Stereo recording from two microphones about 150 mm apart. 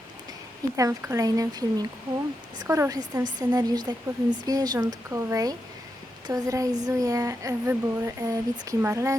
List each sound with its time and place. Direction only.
0.8 s speech: 20° right (ahead or behind)